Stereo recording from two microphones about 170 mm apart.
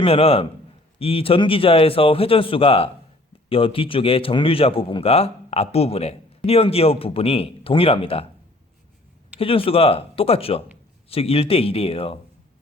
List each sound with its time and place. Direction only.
0.0 s a man's voice: 35° left (ahead or behind)
9.4 s a man's voice: 35° left (ahead or behind)